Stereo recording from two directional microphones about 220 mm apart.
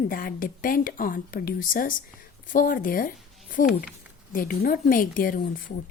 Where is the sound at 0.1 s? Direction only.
40° left (ahead or behind).